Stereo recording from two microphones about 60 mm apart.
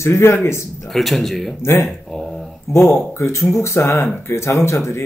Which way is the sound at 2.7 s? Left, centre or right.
Left.